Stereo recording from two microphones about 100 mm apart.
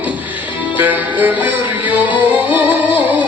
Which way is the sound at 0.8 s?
15° right (ahead or behind).